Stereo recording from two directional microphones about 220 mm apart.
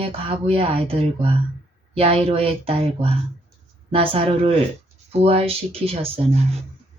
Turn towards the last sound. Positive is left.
turn(degrees=-25)  # may be behind; listen again after turning